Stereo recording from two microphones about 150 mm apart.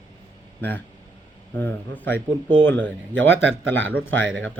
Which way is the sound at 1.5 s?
10° left (ahead or behind).